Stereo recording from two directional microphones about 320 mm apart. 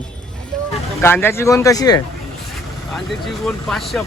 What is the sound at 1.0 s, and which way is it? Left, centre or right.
A man's voice, centre.